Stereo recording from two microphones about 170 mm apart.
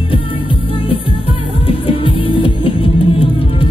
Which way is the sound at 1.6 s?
30° left (ahead or behind).